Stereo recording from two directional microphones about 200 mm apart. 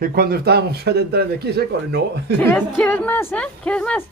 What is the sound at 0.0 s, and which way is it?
Speech, 50° right (ahead or behind).